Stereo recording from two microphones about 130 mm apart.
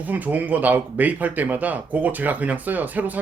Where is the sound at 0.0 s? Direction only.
15° right (ahead or behind).